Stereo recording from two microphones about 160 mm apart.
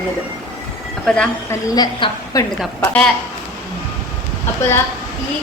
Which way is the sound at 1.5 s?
25° left (ahead or behind).